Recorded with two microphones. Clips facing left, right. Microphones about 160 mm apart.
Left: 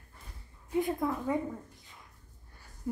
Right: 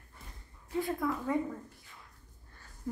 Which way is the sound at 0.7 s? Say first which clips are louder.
Left 2 dB; 20° left (ahead or behind).